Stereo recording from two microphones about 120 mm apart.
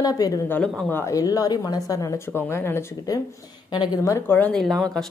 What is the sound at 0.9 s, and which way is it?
Speech, 15° left (ahead or behind).